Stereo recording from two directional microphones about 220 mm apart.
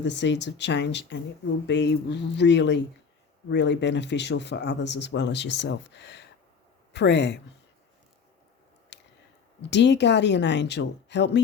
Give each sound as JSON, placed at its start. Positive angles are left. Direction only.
{"t": 0.0, "sound": "speech", "side_deg": 55}
{"t": 8.9, "sound": "a sound", "side_deg": 50}
{"t": 9.6, "sound": "speech", "side_deg": 50}